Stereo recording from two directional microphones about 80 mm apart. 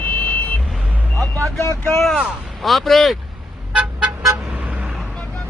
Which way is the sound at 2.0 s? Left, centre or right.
Centre.